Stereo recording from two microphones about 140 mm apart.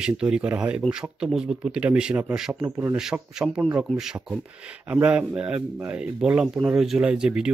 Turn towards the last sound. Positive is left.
turn(degrees=-5)  # may be behind; listen again after turning